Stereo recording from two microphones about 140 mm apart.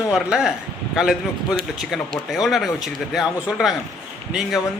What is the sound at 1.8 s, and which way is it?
A man's voice, centre (ahead or behind).